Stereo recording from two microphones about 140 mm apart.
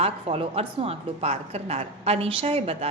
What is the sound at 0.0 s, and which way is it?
A woman's voice, 45° right (ahead or behind).